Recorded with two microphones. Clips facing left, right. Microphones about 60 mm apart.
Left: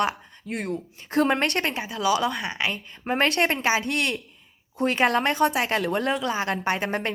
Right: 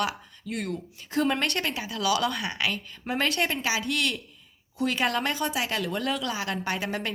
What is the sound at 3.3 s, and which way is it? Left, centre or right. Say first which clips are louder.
Speech: left 5 dB; left.